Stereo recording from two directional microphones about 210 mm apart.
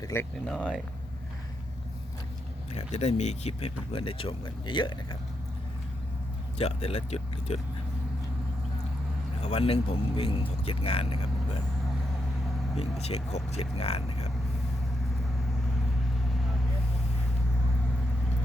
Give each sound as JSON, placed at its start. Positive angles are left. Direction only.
{"t": 0.0, "sound": "speech", "side_deg": 10}
{"t": 2.7, "sound": "speech", "side_deg": 30}
{"t": 6.6, "sound": "speech", "side_deg": 30}
{"t": 9.4, "sound": "speech", "side_deg": 30}
{"t": 12.7, "sound": "speech", "side_deg": 30}